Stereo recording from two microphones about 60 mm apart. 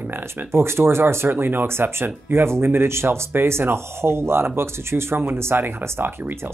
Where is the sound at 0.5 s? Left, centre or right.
Right.